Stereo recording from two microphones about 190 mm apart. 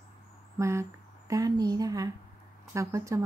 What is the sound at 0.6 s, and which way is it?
A woman's voice, 15° right (ahead or behind).